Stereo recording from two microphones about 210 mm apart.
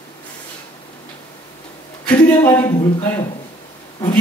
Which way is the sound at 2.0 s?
10° left (ahead or behind).